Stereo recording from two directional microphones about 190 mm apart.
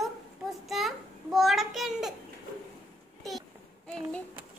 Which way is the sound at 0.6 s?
Centre (ahead or behind).